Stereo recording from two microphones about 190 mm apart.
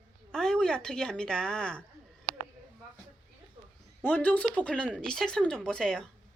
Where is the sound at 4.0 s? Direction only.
10° left (ahead or behind).